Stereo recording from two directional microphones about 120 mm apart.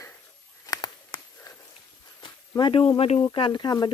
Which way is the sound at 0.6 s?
30° left (ahead or behind).